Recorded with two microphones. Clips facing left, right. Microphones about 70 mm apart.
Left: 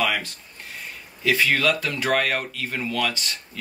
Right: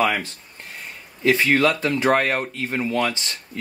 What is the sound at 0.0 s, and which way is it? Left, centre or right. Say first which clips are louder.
Speech: right 3 dB; right.